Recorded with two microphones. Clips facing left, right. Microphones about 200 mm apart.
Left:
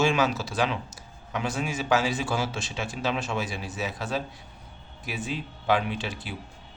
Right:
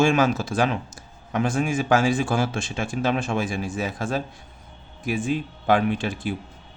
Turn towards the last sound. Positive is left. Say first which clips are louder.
# right 8 dB
turn(degrees=-50)  # may be behind; listen again after turning